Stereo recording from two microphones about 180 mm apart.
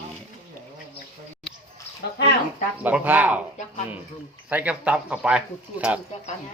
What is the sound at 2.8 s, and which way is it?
Speech, 10° right (ahead or behind).